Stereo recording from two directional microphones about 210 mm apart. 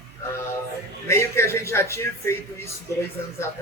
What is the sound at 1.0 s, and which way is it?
Speech, 15° left (ahead or behind).